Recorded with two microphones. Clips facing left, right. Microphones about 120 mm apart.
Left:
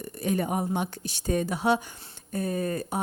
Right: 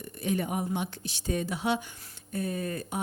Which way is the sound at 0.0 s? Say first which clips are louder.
Left 3 dB; 40° left (ahead or behind).